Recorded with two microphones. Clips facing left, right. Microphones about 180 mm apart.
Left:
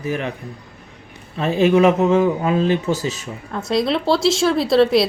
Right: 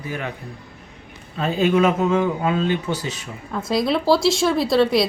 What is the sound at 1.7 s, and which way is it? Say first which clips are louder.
Speech: left 4 dB; 25° left (ahead or behind).